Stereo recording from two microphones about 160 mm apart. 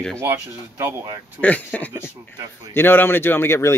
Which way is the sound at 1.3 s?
10° left (ahead or behind).